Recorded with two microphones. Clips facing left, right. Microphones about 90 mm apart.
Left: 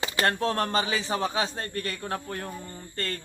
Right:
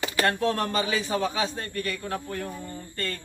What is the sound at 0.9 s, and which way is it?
A man's voice, 25° left (ahead or behind).